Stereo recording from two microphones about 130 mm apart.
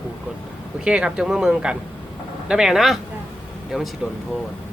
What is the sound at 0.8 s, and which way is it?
Speech, 5° right (ahead or behind).